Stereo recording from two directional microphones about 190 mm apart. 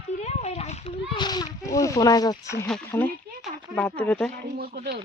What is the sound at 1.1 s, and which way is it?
Speech, 20° left (ahead or behind).